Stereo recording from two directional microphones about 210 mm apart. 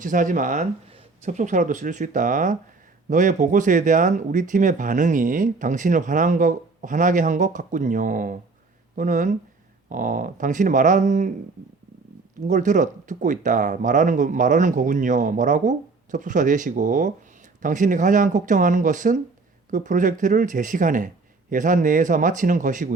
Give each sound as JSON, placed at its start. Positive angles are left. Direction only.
{"t": 0.0, "sound": "speech", "side_deg": -40}
{"t": 12.4, "sound": "speech", "side_deg": -35}